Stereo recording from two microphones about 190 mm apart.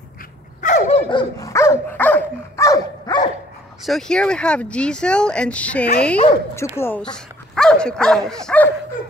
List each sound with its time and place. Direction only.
0.6 s dog: 40° left (ahead or behind)
1.1 s dog: 15° left (ahead or behind)
3.8 s speech: 5° left (ahead or behind)